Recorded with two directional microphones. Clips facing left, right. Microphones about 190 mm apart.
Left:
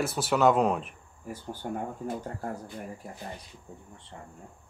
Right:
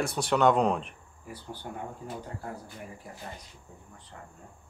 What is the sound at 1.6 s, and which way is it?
Speech, 50° left (ahead or behind).